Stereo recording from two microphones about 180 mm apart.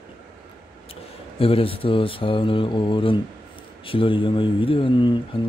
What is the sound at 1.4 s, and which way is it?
Speech, 30° left (ahead or behind).